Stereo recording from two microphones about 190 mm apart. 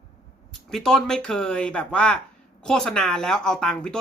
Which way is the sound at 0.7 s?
Centre (ahead or behind).